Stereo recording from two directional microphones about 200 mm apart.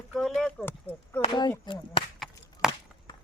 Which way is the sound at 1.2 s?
20° left (ahead or behind).